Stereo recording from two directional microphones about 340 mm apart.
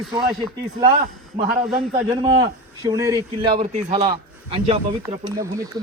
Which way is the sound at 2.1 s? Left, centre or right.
Centre.